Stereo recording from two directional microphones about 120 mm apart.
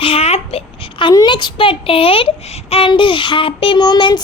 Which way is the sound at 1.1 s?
35° left (ahead or behind).